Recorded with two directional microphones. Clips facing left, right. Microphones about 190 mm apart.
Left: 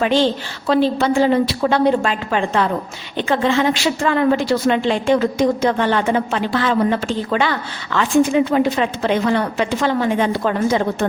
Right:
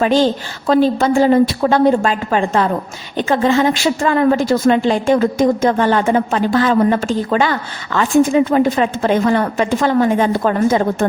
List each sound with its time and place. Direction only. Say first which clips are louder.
0.0 s a woman's voice: right 3 dB; 45° right (ahead or behind)